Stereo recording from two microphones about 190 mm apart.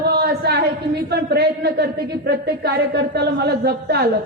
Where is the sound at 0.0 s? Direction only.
55° right (ahead or behind).